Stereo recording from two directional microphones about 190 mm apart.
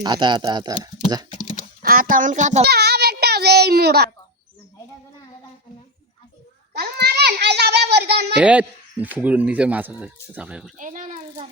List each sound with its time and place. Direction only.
0.0 s speech: 25° right (ahead or behind)
1.8 s a child's voice: 50° right (ahead or behind)
2.6 s child singing: 60° right (ahead or behind)
6.7 s a child's voice: 60° right (ahead or behind)
8.4 s speech: 5° right (ahead or behind)
10.8 s a child's voice: 45° right (ahead or behind)